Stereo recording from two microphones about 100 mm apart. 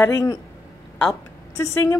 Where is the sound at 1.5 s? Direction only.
30° left (ahead or behind).